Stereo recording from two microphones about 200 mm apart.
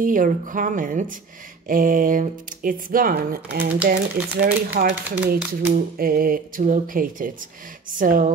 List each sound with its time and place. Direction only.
0.0 s speech: 40° right (ahead or behind)